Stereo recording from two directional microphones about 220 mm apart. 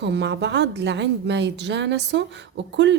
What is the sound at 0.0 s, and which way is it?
A woman's voice, 50° right (ahead or behind).